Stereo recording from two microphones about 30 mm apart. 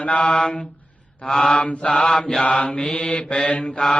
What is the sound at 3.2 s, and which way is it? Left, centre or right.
Mantra, left.